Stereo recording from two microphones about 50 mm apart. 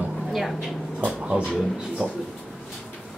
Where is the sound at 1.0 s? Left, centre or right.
Right.